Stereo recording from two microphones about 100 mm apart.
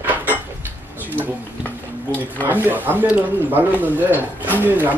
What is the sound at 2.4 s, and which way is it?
Speech, 20° right (ahead or behind).